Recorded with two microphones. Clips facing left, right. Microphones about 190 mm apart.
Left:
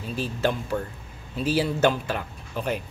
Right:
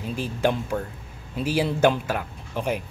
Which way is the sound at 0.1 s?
15° right (ahead or behind).